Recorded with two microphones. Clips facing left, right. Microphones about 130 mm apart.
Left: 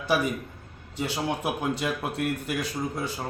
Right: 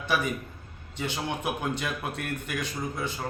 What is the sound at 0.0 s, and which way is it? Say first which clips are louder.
Speech: left 3 dB; 35° left (ahead or behind).